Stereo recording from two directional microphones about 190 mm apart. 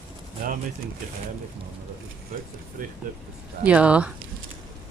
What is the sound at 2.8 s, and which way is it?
Speech, 45° right (ahead or behind).